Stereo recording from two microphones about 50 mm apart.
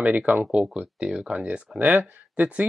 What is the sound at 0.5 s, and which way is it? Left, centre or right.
Speech, centre.